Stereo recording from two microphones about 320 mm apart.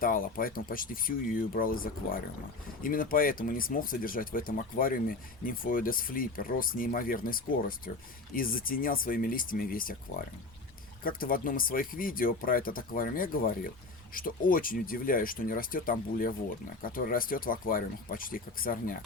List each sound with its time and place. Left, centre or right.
0.0 s speech: left
11.0 s speech: left